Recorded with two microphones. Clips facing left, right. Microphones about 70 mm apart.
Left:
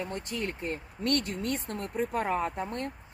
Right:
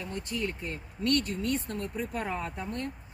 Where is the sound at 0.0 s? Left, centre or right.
Left.